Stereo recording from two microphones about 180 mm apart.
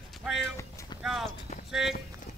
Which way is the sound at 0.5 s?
15° left (ahead or behind).